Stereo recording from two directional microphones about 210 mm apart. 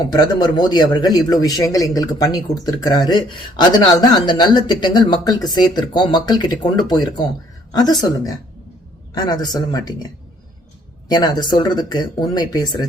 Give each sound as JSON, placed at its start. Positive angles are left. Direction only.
{"t": 0.1, "sound": "a man's voice", "side_deg": 20}
{"t": 11.1, "sound": "a man's voice", "side_deg": 20}